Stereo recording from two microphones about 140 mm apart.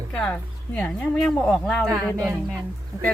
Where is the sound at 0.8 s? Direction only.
5° left (ahead or behind).